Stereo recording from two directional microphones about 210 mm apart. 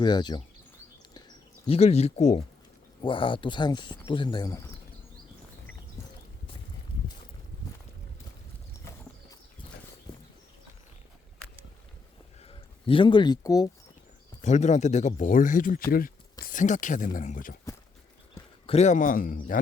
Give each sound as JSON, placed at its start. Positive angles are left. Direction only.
{"t": 0.0, "sound": "speech", "side_deg": 20}
{"t": 1.6, "sound": "speech", "side_deg": 30}
{"t": 12.5, "sound": "speech", "side_deg": 25}
{"t": 14.4, "sound": "speech", "side_deg": 35}
{"t": 18.6, "sound": "speech", "side_deg": 30}